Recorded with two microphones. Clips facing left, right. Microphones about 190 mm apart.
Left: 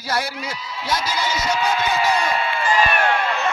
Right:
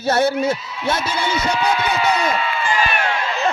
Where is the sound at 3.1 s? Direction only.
55° left (ahead or behind).